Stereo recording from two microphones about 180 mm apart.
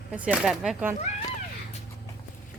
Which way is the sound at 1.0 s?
40° left (ahead or behind).